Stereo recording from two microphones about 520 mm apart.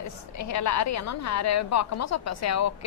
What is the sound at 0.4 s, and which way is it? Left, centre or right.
A woman's voice, left.